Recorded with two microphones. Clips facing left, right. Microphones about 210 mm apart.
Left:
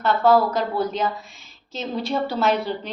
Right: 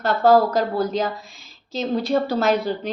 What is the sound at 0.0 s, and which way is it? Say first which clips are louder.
A woman's voice: right 2 dB; 40° right (ahead or behind).